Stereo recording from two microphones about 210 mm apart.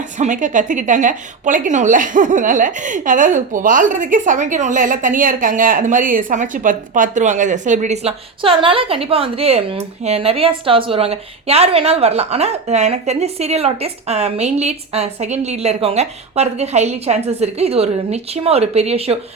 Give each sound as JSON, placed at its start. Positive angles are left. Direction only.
{"t": 0.2, "sound": "a woman's voice", "side_deg": -35}